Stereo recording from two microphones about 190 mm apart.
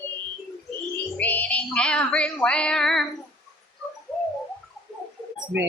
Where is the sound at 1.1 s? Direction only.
10° left (ahead or behind).